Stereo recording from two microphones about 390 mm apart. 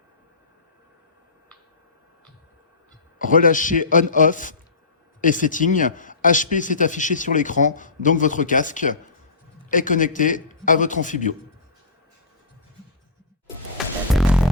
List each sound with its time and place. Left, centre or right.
3.2 s a man's voice: centre
13.7 s music: centre